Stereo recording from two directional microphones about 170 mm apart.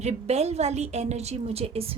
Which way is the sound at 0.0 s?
40° right (ahead or behind).